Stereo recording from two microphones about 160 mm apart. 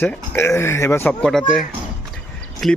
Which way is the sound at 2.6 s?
Centre (ahead or behind).